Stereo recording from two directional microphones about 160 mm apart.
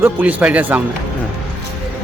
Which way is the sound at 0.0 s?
10° right (ahead or behind).